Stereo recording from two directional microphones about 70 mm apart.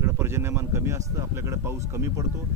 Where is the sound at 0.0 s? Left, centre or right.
Right.